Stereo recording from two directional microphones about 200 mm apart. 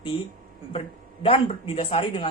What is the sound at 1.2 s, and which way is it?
Speech, 30° left (ahead or behind).